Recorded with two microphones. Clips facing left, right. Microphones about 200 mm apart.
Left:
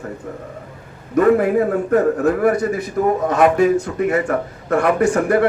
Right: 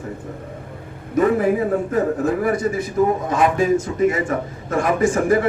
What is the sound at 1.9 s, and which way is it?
A man's voice, 65° left (ahead or behind).